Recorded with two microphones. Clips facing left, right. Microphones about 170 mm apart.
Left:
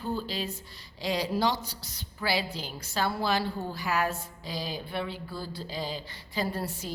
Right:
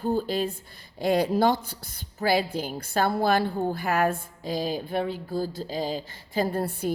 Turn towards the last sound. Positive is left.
turn(degrees=-55)  # may be behind; listen again after turning